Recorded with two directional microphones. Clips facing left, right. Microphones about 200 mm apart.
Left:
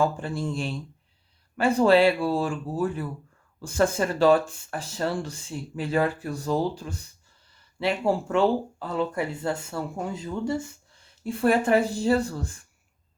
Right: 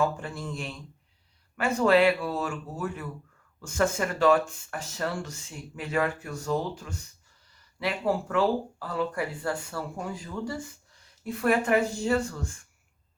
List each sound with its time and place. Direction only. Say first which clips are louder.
0.0 s speech: left 3 dB; 30° left (ahead or behind)